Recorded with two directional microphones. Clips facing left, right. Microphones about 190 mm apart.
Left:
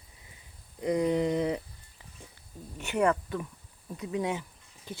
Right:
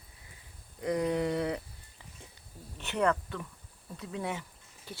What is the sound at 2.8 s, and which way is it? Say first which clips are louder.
Speech: left 3 dB; 10° left (ahead or behind).